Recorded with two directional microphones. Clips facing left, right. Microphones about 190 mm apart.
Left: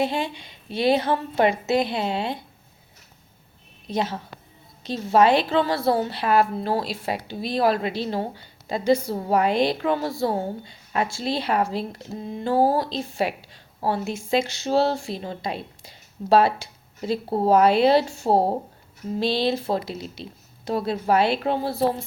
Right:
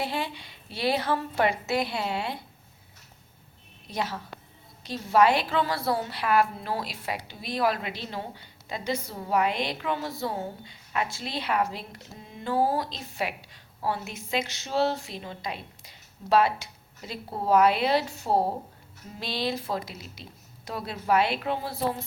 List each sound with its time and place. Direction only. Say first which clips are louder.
0.0 s a woman's voice: left 6 dB; 20° left (ahead or behind)
3.8 s a woman's voice: left 6 dB; 25° left (ahead or behind)